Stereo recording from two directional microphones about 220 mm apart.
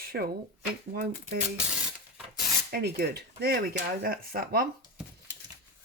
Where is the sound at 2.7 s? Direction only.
45° right (ahead or behind).